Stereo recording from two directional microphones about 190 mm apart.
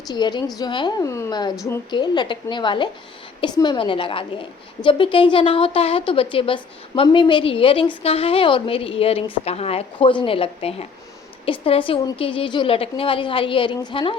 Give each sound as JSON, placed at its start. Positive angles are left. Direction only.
{"t": 0.1, "sound": "speech", "side_deg": 20}